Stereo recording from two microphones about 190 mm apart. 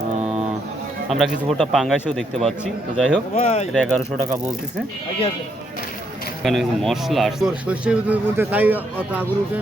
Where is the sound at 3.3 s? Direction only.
35° left (ahead or behind).